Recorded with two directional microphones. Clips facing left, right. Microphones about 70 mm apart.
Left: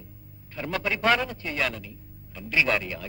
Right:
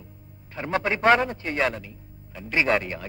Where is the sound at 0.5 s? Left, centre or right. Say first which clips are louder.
Right 3 dB; right.